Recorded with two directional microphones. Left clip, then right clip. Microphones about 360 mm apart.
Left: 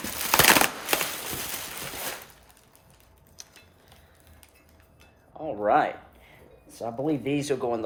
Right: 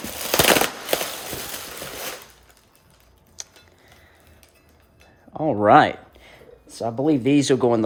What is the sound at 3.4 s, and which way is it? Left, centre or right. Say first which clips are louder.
Mechanisms: right 9 dB; right.